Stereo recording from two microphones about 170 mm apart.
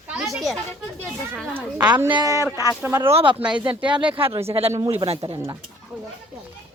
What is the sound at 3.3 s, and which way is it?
Speech, 5° right (ahead or behind).